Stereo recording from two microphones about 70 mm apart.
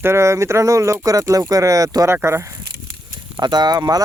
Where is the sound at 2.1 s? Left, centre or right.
Right.